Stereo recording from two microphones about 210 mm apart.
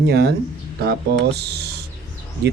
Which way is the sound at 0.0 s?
50° right (ahead or behind).